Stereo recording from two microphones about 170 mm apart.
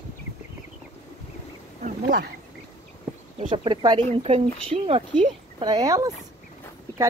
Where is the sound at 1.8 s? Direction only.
60° right (ahead or behind).